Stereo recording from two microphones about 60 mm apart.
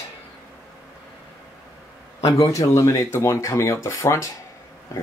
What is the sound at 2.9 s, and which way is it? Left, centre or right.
Speech, left.